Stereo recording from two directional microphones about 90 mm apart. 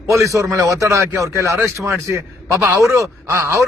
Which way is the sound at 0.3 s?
40° right (ahead or behind).